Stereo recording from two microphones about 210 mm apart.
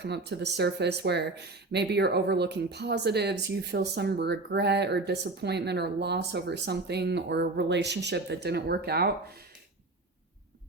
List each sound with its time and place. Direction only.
0.0 s speech: 55° right (ahead or behind)